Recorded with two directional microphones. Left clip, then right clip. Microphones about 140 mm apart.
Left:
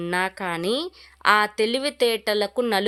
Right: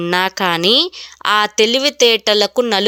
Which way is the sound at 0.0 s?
35° right (ahead or behind).